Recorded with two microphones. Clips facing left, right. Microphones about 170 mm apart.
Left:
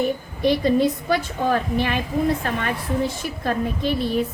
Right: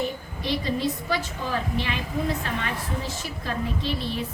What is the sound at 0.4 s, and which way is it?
A woman's voice, 55° left (ahead or behind).